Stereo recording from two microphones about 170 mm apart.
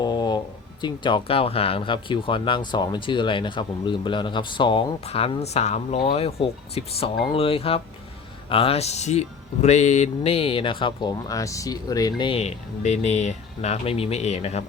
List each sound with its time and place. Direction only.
0.0 s speech: 25° left (ahead or behind)